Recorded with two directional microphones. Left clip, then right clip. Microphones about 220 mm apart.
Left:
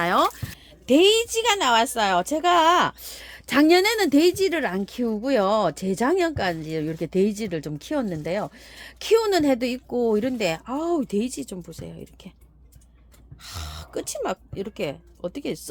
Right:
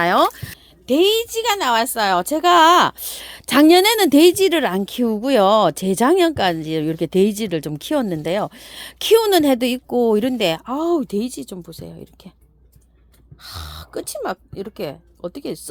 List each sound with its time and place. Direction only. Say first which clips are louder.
0.0 s speech: right 5 dB; 30° right (ahead or behind)
0.9 s a woman's voice: right 1 dB; 15° right (ahead or behind)
13.4 s speech: right 3 dB; 25° right (ahead or behind)